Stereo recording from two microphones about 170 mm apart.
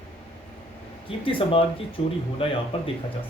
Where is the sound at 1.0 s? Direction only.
30° left (ahead or behind).